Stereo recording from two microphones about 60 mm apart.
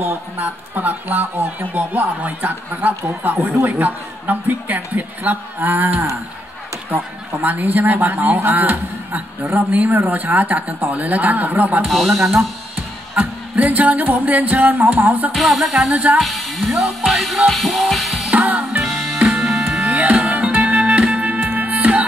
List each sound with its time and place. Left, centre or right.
0.0 s speech: right
7.4 s a man's voice: right
11.8 s music: centre
13.2 s music: right
13.6 s a man's voice: right
15.3 s music: centre
15.9 s a man's voice: right
16.2 s music: centre
18.3 s music: right
18.9 s music: centre
19.9 s music: right